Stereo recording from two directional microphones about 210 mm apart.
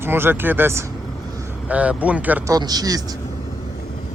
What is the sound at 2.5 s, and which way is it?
Speech, 20° right (ahead or behind).